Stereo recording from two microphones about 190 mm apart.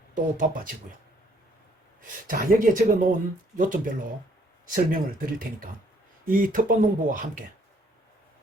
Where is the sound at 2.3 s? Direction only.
45° right (ahead or behind).